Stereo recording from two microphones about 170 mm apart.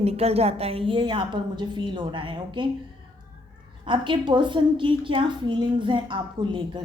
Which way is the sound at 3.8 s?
30° right (ahead or behind).